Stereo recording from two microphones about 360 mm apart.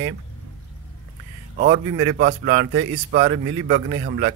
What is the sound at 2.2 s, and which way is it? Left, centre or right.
Speech, right.